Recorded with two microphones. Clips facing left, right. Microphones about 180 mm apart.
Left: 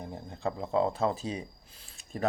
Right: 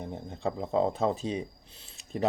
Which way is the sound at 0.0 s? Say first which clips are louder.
Right 3 dB; 20° right (ahead or behind).